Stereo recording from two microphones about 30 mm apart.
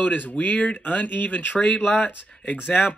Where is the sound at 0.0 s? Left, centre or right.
Left.